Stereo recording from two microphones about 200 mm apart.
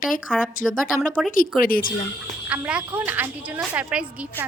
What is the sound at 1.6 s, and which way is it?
Speech, 45° left (ahead or behind).